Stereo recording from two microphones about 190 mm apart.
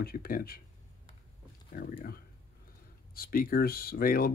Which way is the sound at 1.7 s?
50° left (ahead or behind).